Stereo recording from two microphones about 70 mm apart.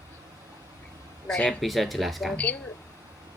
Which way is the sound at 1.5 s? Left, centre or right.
Centre.